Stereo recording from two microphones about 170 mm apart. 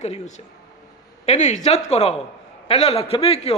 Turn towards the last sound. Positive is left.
turn(degrees=35)  # may be behind; listen again after turning